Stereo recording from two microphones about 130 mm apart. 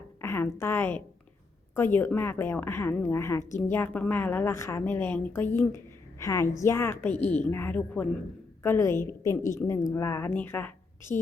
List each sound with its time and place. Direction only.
0.2 s a woman's voice: 15° left (ahead or behind)